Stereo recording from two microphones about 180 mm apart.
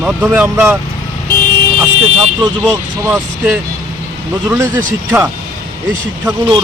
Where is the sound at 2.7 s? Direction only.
15° right (ahead or behind).